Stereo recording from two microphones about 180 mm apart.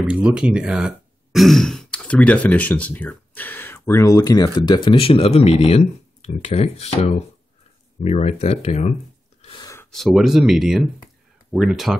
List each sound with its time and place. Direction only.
0.0 s speech: 5° right (ahead or behind); by 8.9 s 35° left (ahead or behind)
9.4 s a sound: 30° left (ahead or behind)
9.8 s speech: centre (ahead or behind)